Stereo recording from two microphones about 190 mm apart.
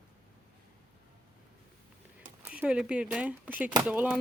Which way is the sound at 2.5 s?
5° right (ahead or behind).